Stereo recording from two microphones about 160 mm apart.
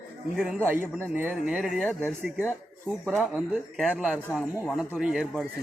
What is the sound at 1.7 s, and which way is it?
Speech, 5° left (ahead or behind).